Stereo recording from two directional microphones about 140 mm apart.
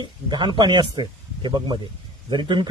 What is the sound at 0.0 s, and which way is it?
Speech, 30° right (ahead or behind).